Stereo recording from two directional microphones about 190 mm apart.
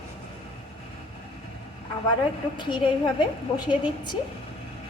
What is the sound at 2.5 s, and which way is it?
A woman's voice, 25° left (ahead or behind).